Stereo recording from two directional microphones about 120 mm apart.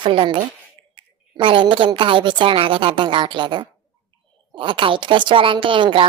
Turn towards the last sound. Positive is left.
turn(degrees=-45)  # may be behind; listen again after turning